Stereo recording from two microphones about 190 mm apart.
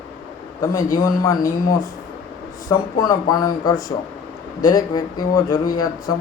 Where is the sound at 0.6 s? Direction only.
15° left (ahead or behind).